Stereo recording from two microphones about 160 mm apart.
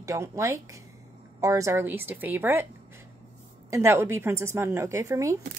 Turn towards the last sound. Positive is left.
turn(degrees=-20)  # may be behind; listen again after turning